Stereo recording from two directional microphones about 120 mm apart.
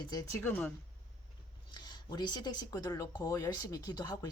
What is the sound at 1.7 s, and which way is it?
Speech, 35° left (ahead or behind).